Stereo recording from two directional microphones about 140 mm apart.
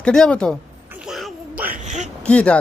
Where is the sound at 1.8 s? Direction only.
60° right (ahead or behind).